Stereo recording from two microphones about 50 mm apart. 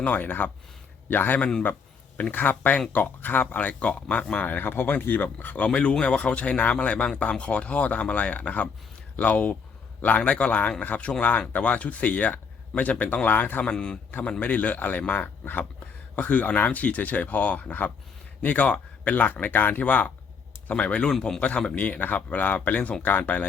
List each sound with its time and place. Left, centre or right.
0.0 s speech: left
3.8 s speech: left
4.4 s speech: left
13.6 s speech: centre
14.1 s speech: left
21.1 s speech: centre
21.8 s speech: left